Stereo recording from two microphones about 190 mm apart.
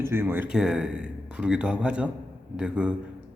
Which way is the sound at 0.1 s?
10° right (ahead or behind).